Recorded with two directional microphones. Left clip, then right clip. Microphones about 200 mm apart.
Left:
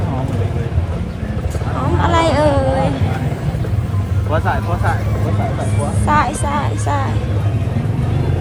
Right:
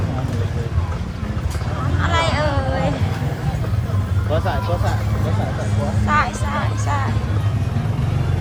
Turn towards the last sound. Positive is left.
turn(degrees=0)  # may be behind; listen again after turning